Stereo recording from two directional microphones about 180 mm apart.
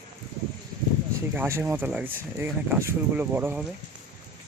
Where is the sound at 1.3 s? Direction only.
10° right (ahead or behind).